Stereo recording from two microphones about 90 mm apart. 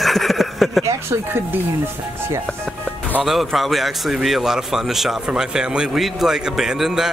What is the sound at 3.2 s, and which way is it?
A man's voice, centre (ahead or behind).